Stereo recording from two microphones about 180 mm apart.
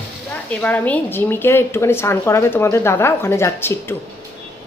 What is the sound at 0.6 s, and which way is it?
A woman's voice, 10° left (ahead or behind).